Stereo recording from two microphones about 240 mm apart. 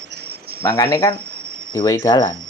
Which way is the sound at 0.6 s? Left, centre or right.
Centre.